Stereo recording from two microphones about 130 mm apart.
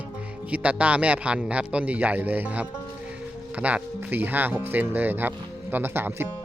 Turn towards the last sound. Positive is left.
turn(degrees=-15)  # may be behind; listen again after turning